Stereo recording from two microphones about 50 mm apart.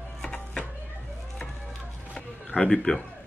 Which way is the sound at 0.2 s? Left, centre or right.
Centre.